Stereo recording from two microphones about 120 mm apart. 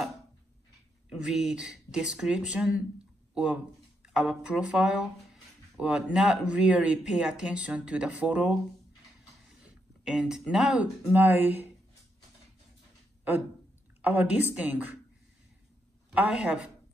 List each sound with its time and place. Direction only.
1.2 s speech: 5° right (ahead or behind)
9.6 s a sound: 5° right (ahead or behind)
11.1 s speech: 15° right (ahead or behind)
14.0 s speech: 15° right (ahead or behind)
16.1 s speech: 10° right (ahead or behind)